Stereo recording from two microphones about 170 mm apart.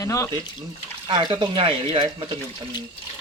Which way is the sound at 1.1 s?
30° right (ahead or behind).